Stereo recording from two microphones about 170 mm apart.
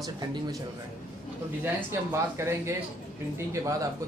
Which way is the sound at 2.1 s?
15° right (ahead or behind).